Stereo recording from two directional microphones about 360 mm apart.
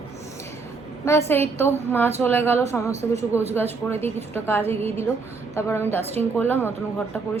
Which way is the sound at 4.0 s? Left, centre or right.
Centre.